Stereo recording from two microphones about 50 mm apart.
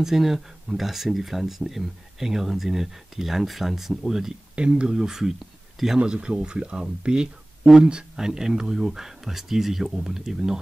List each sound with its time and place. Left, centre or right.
0.0 s speech: centre
4.6 s speech: centre